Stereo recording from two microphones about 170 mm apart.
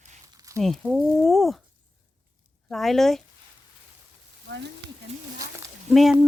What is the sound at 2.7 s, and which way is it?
Speech, centre (ahead or behind).